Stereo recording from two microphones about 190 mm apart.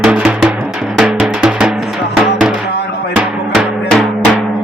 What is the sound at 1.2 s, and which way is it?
Music, 5° right (ahead or behind).